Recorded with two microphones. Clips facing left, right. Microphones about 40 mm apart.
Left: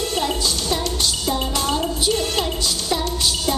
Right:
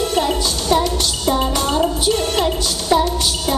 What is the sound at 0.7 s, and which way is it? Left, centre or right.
Music, right.